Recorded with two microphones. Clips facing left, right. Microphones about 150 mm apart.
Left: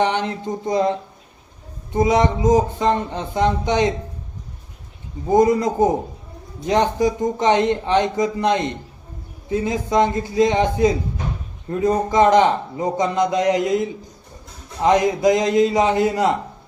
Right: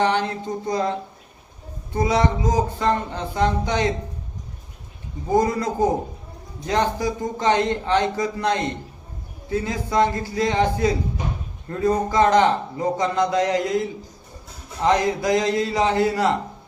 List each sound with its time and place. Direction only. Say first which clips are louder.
0.0 s a man's voice: left 1 dB; 20° left (ahead or behind)
5.3 s a man's voice: left 5 dB; 20° left (ahead or behind)